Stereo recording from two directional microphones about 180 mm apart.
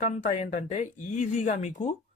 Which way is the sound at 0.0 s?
40° left (ahead or behind).